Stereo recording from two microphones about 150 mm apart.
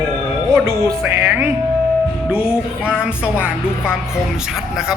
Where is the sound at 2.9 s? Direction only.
5° right (ahead or behind).